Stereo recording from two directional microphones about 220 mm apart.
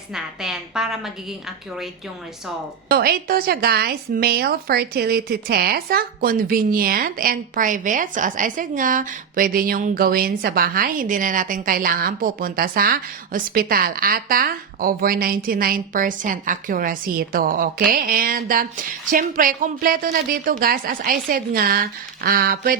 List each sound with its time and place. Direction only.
0.1 s a woman's voice: 5° right (ahead or behind)
2.9 s a woman's voice: 45° right (ahead or behind)